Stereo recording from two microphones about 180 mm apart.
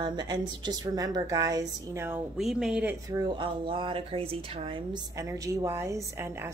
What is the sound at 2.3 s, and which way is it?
Speech, centre (ahead or behind).